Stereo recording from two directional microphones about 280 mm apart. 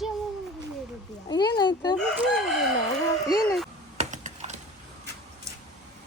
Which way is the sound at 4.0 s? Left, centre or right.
Right.